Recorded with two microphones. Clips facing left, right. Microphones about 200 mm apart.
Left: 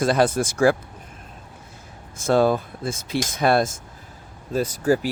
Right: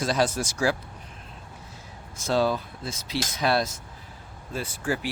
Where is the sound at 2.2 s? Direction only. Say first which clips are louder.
Left 6 dB; 50° left (ahead or behind).